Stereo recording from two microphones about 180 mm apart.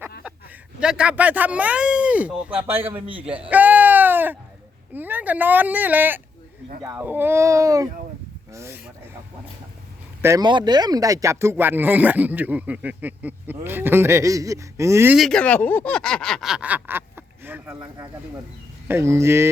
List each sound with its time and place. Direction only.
0.8 s speech: 5° right (ahead or behind)
3.5 s a sound: 10° right (ahead or behind)
4.9 s speech: 10° right (ahead or behind)
10.2 s speech: 15° right (ahead or behind)
15.1 s speech: centre (ahead or behind); by 19.5 s 15° right (ahead or behind)